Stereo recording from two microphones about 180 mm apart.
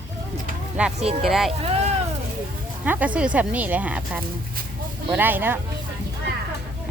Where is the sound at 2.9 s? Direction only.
10° right (ahead or behind).